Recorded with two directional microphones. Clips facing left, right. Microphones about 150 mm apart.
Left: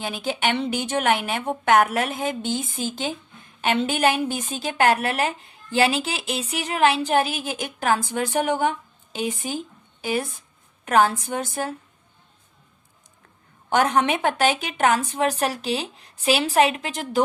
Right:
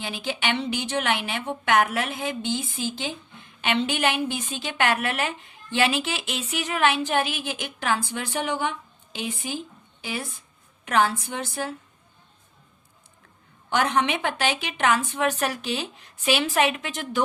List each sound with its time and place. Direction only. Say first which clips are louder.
0.0 s a woman's voice: left 4 dB; 45° left (ahead or behind)
13.7 s a woman's voice: left 3 dB; 45° left (ahead or behind)